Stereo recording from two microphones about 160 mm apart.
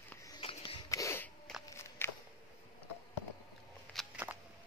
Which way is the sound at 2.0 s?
15° left (ahead or behind).